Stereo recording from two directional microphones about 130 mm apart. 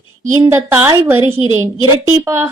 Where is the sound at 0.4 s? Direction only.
25° right (ahead or behind).